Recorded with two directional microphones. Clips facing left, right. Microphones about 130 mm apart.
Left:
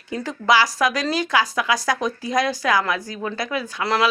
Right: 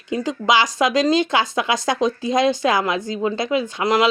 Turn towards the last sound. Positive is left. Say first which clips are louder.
# right 3 dB
turn(degrees=-20)  # may be behind; listen again after turning